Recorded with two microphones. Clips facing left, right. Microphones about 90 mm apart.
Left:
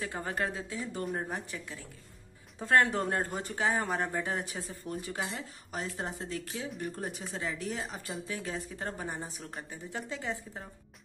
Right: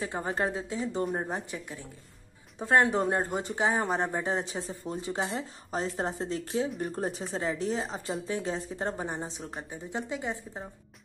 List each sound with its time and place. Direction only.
0.0 s speech: 20° right (ahead or behind)